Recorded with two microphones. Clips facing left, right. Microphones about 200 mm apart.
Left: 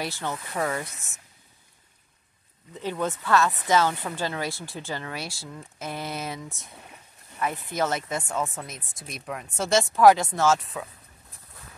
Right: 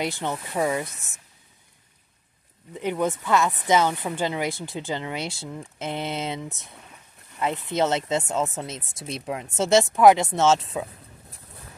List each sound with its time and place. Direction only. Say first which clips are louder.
0.0 s speech: right 4 dB; 20° right (ahead or behind)
2.7 s speech: right 4 dB; 15° right (ahead or behind)